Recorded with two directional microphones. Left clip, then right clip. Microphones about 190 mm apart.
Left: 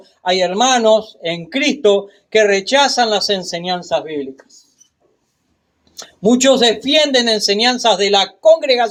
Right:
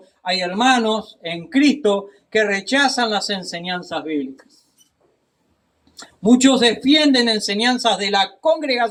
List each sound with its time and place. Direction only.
0.2 s speech: 50° left (ahead or behind)
6.0 s speech: 50° left (ahead or behind)